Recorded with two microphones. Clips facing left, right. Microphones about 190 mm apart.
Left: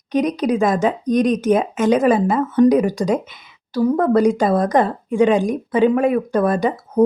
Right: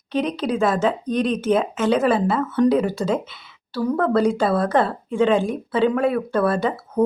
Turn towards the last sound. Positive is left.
turn(degrees=15)  # may be behind; listen again after turning